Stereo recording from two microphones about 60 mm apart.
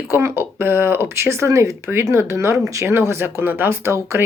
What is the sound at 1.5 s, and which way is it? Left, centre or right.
Speech, right.